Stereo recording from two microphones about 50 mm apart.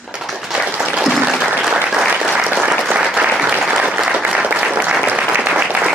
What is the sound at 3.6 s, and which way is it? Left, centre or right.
Applause, centre.